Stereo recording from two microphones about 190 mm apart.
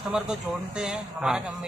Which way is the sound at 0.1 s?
5° right (ahead or behind).